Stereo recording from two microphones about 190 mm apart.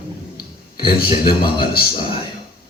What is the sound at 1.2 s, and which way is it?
Mantra, 25° left (ahead or behind).